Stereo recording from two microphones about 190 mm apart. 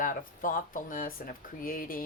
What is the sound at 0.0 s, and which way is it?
A woman's voice, 45° left (ahead or behind).